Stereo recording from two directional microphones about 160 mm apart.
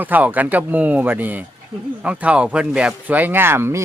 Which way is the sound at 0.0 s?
10° right (ahead or behind).